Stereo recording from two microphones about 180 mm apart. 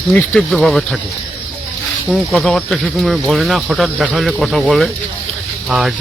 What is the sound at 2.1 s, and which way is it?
Speech, centre (ahead or behind).